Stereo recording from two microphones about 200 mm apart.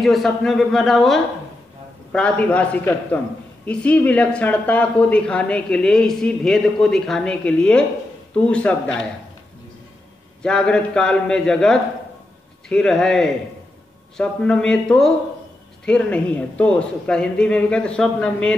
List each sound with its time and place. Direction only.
0.0 s a man's voice: centre (ahead or behind)
10.4 s speech: 5° left (ahead or behind)